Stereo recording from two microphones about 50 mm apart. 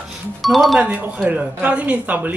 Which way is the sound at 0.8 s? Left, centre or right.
Right.